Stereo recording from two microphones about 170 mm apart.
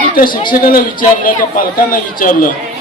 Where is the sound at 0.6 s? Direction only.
55° left (ahead or behind).